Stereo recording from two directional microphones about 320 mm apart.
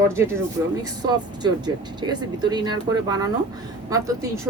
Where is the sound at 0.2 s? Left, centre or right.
Centre.